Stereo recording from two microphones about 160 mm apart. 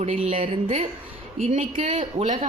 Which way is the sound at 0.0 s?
40° right (ahead or behind).